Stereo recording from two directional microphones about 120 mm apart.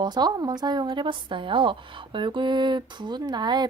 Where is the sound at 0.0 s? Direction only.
35° right (ahead or behind).